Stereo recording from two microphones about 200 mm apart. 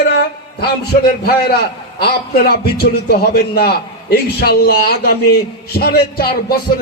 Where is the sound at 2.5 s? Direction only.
50° left (ahead or behind).